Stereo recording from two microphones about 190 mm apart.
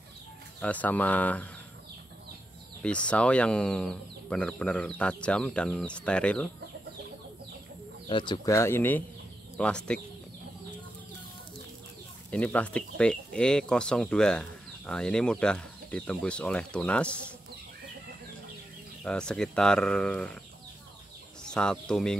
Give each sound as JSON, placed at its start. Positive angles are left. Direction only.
{"t": 0.6, "sound": "speech", "side_deg": 10}
{"t": 2.8, "sound": "speech", "side_deg": 5}
{"t": 8.1, "sound": "speech", "side_deg": 25}
{"t": 12.3, "sound": "speech", "side_deg": 5}
{"t": 19.0, "sound": "speech", "side_deg": 5}
{"t": 21.5, "sound": "speech", "side_deg": 5}